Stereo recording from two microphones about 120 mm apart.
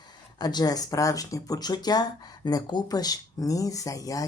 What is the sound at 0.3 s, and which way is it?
Speech, 35° left (ahead or behind).